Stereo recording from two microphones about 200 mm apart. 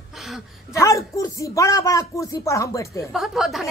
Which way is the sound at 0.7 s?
15° left (ahead or behind).